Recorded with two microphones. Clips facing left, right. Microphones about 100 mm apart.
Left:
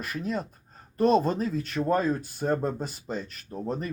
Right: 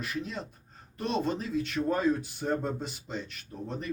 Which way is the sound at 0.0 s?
45° left (ahead or behind).